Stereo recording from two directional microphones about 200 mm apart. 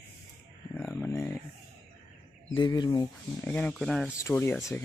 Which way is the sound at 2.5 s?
20° left (ahead or behind).